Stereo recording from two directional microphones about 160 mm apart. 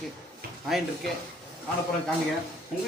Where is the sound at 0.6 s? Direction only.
Centre (ahead or behind).